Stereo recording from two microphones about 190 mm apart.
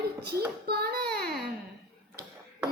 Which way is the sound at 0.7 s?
55° right (ahead or behind).